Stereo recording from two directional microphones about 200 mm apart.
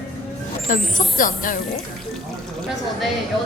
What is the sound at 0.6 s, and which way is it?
Speech, 40° left (ahead or behind).